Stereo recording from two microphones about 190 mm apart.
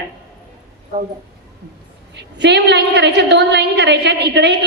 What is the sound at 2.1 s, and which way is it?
A woman's voice, 65° right (ahead or behind).